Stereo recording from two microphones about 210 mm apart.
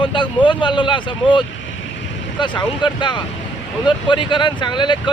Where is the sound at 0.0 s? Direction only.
25° left (ahead or behind).